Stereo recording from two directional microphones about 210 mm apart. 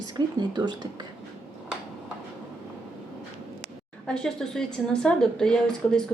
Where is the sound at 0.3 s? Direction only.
20° right (ahead or behind).